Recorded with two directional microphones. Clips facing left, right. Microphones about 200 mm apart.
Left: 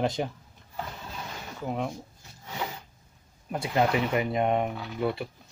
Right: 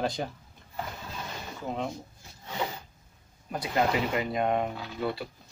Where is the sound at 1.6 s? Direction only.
10° left (ahead or behind).